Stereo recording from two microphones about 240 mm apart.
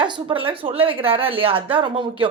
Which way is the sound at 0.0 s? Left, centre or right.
Right.